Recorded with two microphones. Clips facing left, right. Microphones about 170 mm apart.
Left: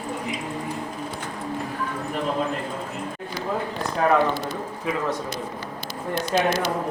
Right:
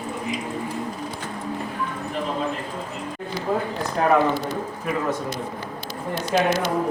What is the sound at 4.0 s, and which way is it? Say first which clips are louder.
Speech: right 1 dB; centre (ahead or behind).